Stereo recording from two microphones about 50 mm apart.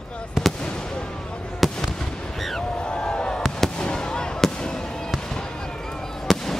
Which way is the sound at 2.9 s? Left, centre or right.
Left.